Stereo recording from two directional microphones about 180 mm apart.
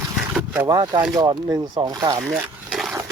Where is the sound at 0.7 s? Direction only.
25° right (ahead or behind).